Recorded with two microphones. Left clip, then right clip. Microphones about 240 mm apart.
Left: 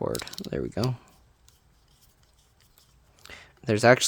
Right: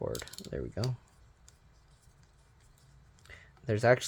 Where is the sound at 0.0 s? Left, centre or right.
Left.